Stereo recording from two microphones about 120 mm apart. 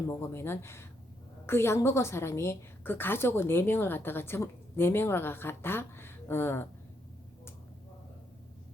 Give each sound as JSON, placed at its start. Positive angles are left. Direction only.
{"t": 0.1, "sound": "a woman's voice", "side_deg": 20}